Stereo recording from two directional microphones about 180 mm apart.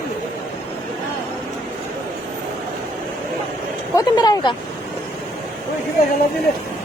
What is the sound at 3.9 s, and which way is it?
Speech, 20° left (ahead or behind).